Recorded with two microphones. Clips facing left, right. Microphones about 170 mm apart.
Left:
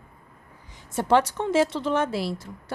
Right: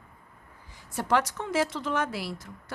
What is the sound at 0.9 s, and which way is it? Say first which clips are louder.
A woman's voice: left 5 dB; 25° left (ahead or behind).